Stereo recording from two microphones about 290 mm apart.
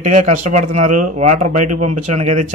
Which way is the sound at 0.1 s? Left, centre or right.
Right.